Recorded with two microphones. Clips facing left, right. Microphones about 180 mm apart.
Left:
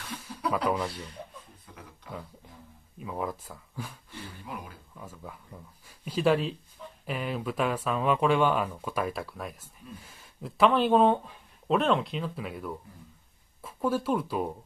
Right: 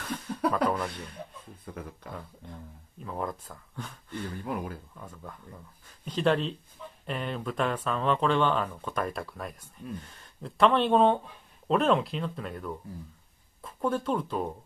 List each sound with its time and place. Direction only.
0.3 s a sound: 55° right (ahead or behind)
0.7 s speech: 10° left (ahead or behind)
1.7 s speech: 55° right (ahead or behind)
2.4 s speech: 5° left (ahead or behind)
4.5 s speech: 50° right (ahead or behind)
4.9 s speech: 5° left (ahead or behind)